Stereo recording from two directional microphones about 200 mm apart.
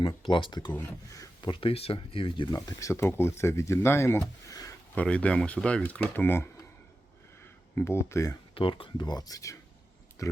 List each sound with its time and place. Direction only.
0.0 s speech: 25° left (ahead or behind)
0.7 s speech: 10° left (ahead or behind)
5.0 s speech: 5° left (ahead or behind)
7.8 s speech: 15° left (ahead or behind)
8.5 s speech: 25° left (ahead or behind)